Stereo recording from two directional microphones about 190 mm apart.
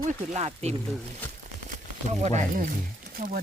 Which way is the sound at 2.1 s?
35° right (ahead or behind).